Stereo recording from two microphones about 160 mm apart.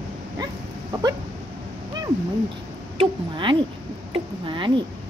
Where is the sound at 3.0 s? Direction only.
30° right (ahead or behind).